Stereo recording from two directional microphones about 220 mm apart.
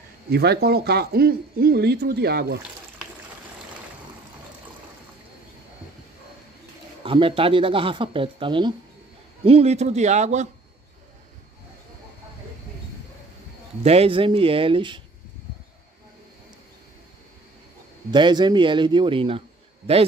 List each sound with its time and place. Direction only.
0.3 s speech: 45° right (ahead or behind)
7.0 s a man's voice: 25° right (ahead or behind)
13.8 s speech: 25° right (ahead or behind)
18.1 s speech: 20° right (ahead or behind)